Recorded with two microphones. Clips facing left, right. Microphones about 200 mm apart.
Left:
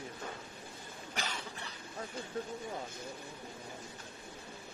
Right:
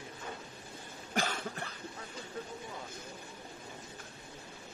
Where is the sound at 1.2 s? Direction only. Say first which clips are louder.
Right 7 dB; 50° right (ahead or behind).